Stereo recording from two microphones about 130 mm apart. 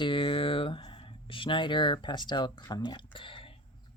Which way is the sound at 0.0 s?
40° left (ahead or behind).